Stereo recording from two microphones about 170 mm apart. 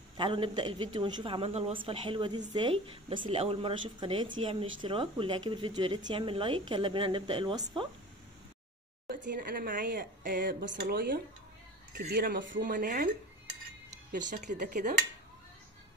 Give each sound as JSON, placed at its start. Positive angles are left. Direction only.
{"t": 0.2, "sound": "a woman's voice", "side_deg": -30}
{"t": 9.1, "sound": "speech", "side_deg": -60}
{"t": 14.1, "sound": "speech", "side_deg": -50}